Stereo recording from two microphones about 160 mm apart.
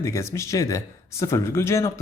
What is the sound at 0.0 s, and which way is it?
Speech, 20° left (ahead or behind).